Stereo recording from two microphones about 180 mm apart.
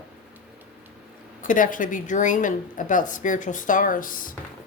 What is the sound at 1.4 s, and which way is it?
A woman's voice, 45° left (ahead or behind).